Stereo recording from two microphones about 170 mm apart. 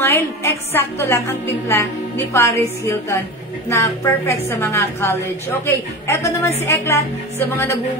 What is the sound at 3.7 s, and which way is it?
Music, 15° left (ahead or behind).